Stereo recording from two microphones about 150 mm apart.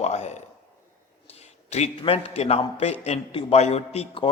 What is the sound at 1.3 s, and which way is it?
A man's voice, 45° left (ahead or behind).